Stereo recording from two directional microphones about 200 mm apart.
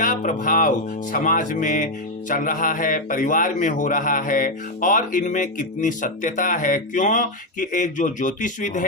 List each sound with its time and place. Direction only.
0.0 s a man's voice: 40° left (ahead or behind)